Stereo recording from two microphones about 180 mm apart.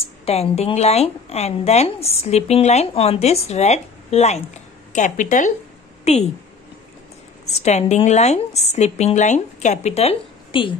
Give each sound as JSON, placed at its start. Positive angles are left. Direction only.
{"t": 0.0, "sound": "a woman's voice", "side_deg": 35}
{"t": 7.5, "sound": "a woman's voice", "side_deg": 40}